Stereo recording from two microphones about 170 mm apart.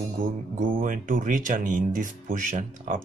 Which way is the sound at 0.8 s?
50° right (ahead or behind).